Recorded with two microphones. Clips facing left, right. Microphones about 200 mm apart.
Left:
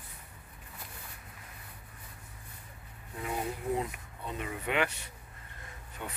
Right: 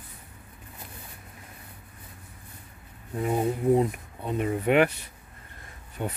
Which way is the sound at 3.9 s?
50° right (ahead or behind).